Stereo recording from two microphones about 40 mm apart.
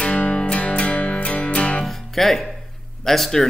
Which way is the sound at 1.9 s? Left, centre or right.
Centre.